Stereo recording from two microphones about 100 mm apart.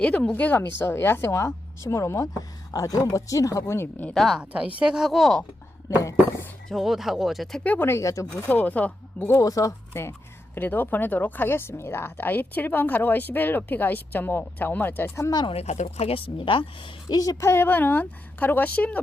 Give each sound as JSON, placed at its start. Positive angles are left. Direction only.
{"t": 0.0, "sound": "speech", "side_deg": 10}
{"t": 4.1, "sound": "speech", "side_deg": 0}
{"t": 4.5, "sound": "speech", "side_deg": -10}
{"t": 6.0, "sound": "speech", "side_deg": 30}
{"t": 6.7, "sound": "speech", "side_deg": 0}
{"t": 7.6, "sound": "speech", "side_deg": 15}
{"t": 7.9, "sound": "speech", "side_deg": 30}
{"t": 8.4, "sound": "speech", "side_deg": 15}
{"t": 9.3, "sound": "speech", "side_deg": 35}
{"t": 9.9, "sound": "speech", "side_deg": 25}
{"t": 15.3, "sound": "speech", "side_deg": 45}
{"t": 15.5, "sound": "a woman's voice", "side_deg": 90}
{"t": 17.2, "sound": "speech", "side_deg": 30}